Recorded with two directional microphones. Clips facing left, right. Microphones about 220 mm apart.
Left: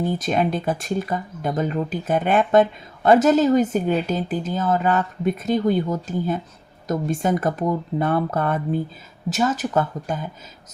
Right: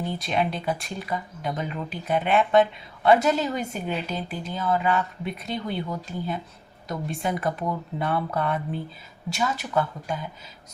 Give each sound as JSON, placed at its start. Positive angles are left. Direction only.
{"t": 0.0, "sound": "speech", "side_deg": 45}